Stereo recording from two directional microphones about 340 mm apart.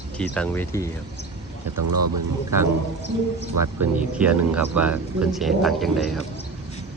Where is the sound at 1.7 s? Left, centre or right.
Right.